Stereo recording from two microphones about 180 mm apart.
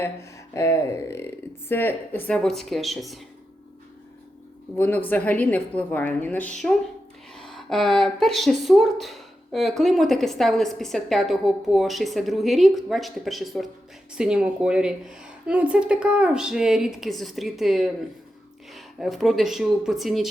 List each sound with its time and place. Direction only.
0.5 s a woman's voice: 15° left (ahead or behind); by 3.2 s centre (ahead or behind)
4.8 s a woman's voice: 10° left (ahead or behind)